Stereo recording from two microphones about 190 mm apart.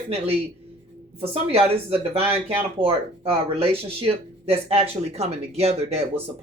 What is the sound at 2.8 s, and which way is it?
Speech, 30° right (ahead or behind).